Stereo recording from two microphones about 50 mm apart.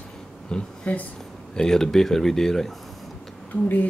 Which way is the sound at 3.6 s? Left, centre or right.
Left.